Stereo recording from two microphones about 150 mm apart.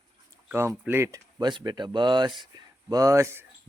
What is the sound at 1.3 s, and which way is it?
Speech, 30° right (ahead or behind).